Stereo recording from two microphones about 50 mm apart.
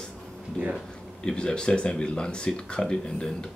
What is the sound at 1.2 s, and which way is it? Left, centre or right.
Speech, centre.